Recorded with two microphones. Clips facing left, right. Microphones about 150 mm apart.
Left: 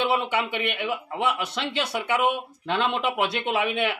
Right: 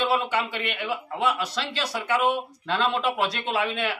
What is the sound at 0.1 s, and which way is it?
Speech, 20° left (ahead or behind).